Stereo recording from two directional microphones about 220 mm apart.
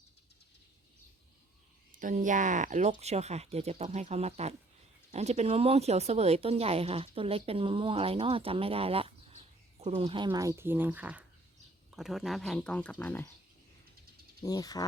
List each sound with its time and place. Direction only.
1.9 s speech: 35° right (ahead or behind); by 13.2 s 5° left (ahead or behind)
14.4 s speech: 15° left (ahead or behind)